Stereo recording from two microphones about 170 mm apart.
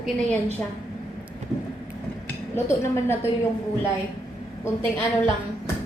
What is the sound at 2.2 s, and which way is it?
Speech, 15° left (ahead or behind).